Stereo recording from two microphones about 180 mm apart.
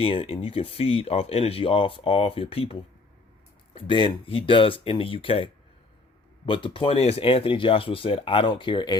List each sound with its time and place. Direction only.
0.0 s speech: 30° left (ahead or behind)